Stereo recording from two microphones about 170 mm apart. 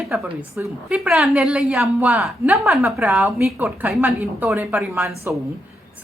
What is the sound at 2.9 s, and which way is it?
A woman's voice, 10° right (ahead or behind).